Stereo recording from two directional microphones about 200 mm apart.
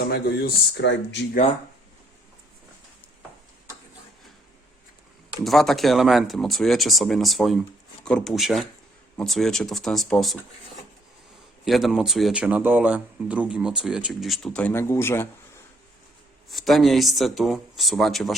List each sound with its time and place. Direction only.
0.1 s speech: 55° left (ahead or behind)
5.4 s speech: centre (ahead or behind)
11.6 s speech: centre (ahead or behind)
16.5 s speech: centre (ahead or behind)